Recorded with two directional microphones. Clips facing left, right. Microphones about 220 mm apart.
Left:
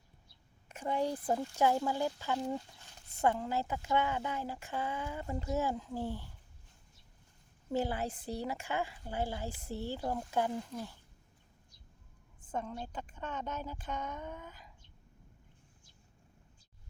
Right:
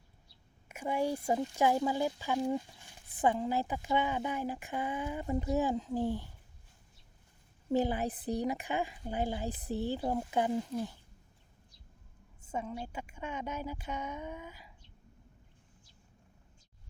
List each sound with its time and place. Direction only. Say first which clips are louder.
0.7 s speech: right 1 dB; 10° right (ahead or behind)
7.7 s speech: right 4 dB; 15° right (ahead or behind)
12.5 s speech: right 1 dB; 10° right (ahead or behind)